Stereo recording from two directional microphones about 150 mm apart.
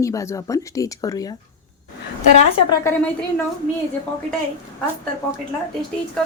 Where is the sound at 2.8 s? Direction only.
15° left (ahead or behind).